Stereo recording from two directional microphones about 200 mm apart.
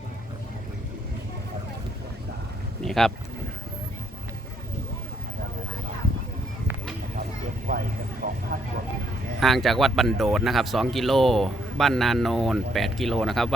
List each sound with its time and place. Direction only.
2.8 s speech: centre (ahead or behind)
7.7 s a sound: 45° right (ahead or behind)
8.2 s vehicle: 45° right (ahead or behind)
9.4 s speech: centre (ahead or behind)